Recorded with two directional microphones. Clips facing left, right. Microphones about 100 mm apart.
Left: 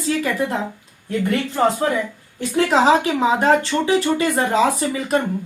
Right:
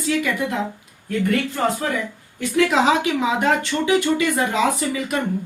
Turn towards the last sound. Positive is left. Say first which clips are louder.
# left 3 dB
turn(degrees=35)  # may be behind; listen again after turning